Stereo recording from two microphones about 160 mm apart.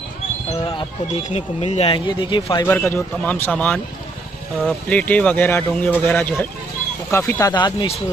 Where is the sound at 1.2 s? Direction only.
45° left (ahead or behind).